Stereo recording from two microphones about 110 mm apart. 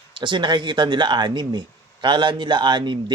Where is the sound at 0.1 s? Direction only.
45° right (ahead or behind).